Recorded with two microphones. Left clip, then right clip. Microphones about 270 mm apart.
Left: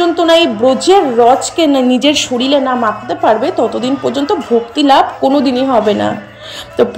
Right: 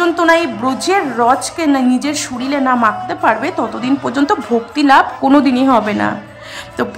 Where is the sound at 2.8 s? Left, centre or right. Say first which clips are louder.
Left 1 dB; centre.